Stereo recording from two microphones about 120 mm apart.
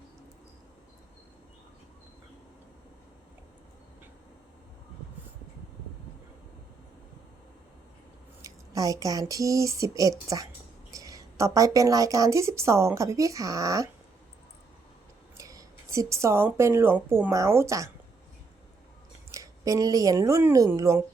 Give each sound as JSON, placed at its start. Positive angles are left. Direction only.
{"t": 8.4, "sound": "a sound", "side_deg": -30}
{"t": 10.9, "sound": "a woman's voice", "side_deg": -30}
{"t": 15.4, "sound": "speech", "side_deg": -30}
{"t": 19.3, "sound": "speech", "side_deg": -30}